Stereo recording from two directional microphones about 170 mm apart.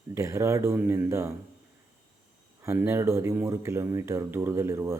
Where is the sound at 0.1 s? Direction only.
15° right (ahead or behind).